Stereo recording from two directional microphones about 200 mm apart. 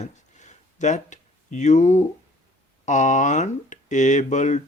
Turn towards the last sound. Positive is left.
turn(degrees=35)  # may be behind; listen again after turning